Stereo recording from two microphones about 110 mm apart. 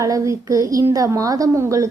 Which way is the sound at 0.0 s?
30° right (ahead or behind).